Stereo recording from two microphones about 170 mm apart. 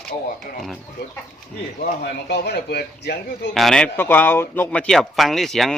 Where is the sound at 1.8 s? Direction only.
70° left (ahead or behind).